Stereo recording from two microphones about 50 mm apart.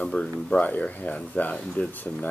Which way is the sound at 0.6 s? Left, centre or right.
Left.